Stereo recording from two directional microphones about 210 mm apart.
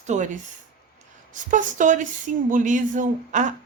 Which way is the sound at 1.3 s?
35° right (ahead or behind).